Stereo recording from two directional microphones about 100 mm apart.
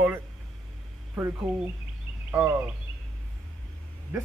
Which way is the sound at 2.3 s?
15° right (ahead or behind).